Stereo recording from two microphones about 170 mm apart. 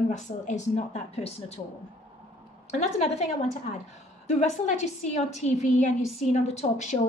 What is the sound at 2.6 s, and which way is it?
A woman's voice, 40° left (ahead or behind).